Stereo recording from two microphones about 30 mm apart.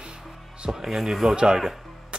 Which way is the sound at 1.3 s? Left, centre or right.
Right.